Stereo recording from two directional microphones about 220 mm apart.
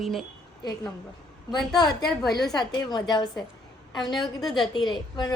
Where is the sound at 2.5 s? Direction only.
20° left (ahead or behind).